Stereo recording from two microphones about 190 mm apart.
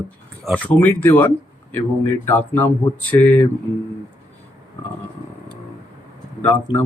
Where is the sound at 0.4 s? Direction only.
5° left (ahead or behind).